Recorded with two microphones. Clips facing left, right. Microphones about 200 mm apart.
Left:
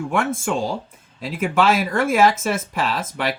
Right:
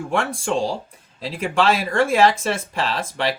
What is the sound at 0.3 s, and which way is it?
Speech, 30° right (ahead or behind).